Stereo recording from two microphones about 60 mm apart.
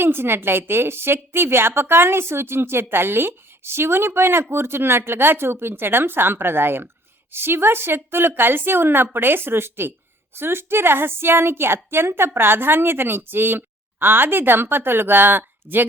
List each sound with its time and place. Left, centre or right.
0.0 s a woman's voice: right